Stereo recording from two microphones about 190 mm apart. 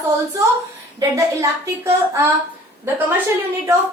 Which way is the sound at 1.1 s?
15° right (ahead or behind).